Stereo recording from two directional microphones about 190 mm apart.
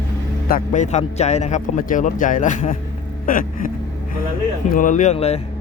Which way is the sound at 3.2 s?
45° left (ahead or behind).